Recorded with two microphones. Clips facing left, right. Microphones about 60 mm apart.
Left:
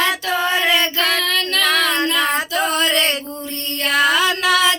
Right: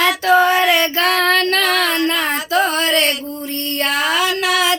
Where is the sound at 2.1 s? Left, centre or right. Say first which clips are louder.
Left 1 dB; right.